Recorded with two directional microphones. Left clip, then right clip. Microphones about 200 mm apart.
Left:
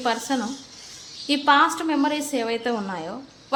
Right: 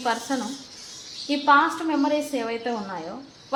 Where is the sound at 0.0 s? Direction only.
35° left (ahead or behind).